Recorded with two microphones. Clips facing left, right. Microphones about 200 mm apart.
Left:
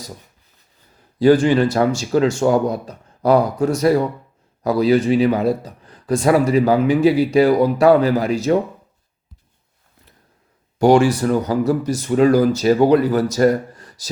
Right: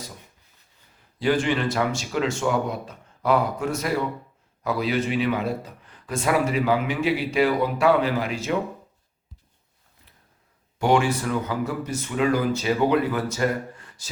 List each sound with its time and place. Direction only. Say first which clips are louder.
1.2 s speech: left 9 dB; 40° left (ahead or behind)
10.8 s speech: left 8 dB; 35° left (ahead or behind)